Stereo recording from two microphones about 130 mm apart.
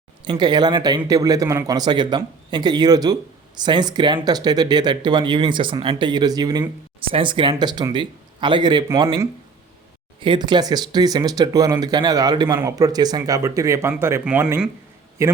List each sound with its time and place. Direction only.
0.3 s speech: 35° right (ahead or behind)
7.1 s speech: 40° right (ahead or behind); by 15.3 s 20° right (ahead or behind)